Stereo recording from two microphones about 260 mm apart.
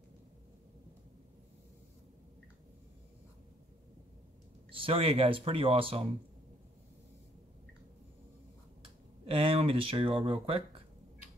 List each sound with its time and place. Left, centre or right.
4.6 s speech: right
8.8 s speech: right